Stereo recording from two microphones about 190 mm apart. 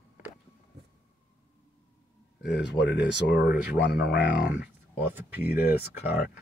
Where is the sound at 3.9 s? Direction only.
60° left (ahead or behind).